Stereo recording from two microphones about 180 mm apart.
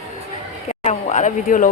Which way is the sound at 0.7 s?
40° left (ahead or behind).